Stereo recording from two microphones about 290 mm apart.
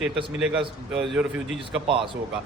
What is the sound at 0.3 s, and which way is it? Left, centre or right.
A man's voice, centre.